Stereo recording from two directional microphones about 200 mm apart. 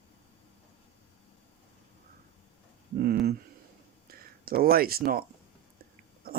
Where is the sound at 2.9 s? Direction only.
50° right (ahead or behind).